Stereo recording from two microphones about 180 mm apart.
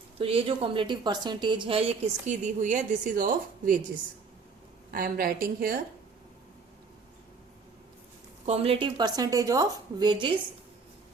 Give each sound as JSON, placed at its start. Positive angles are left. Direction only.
{"t": 0.2, "sound": "a woman's voice", "side_deg": -30}
{"t": 4.9, "sound": "a woman's voice", "side_deg": -55}
{"t": 8.4, "sound": "a woman's voice", "side_deg": -35}